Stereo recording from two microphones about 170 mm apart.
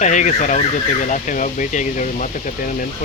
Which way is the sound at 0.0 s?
45° left (ahead or behind).